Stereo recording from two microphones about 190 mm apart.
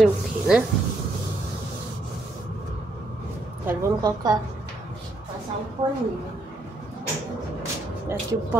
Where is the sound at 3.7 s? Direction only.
20° right (ahead or behind).